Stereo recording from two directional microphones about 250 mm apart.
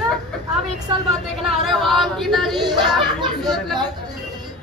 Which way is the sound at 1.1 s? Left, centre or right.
Centre.